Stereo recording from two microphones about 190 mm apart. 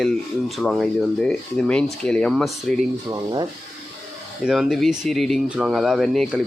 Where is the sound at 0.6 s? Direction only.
Centre (ahead or behind).